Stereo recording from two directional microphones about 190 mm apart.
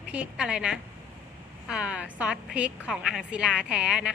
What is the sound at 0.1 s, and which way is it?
A woman's voice, 5° right (ahead or behind).